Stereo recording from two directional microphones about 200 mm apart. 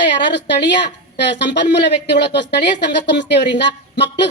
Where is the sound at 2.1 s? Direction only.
55° left (ahead or behind).